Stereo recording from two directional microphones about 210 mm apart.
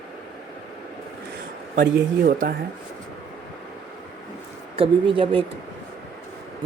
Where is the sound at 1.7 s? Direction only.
45° right (ahead or behind).